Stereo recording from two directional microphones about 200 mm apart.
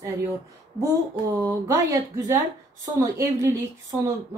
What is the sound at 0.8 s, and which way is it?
Speech, 15° right (ahead or behind).